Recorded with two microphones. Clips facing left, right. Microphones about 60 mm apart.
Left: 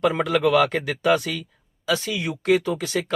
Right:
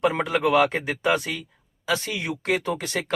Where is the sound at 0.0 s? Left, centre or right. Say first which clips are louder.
Left 2 dB; right.